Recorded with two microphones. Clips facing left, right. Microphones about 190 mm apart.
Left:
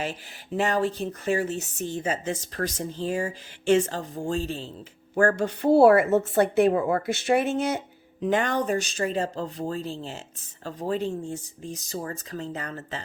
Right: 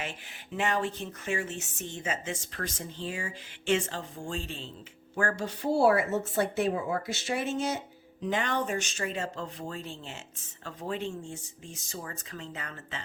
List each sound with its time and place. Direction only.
0.0 s a woman's voice: 35° left (ahead or behind)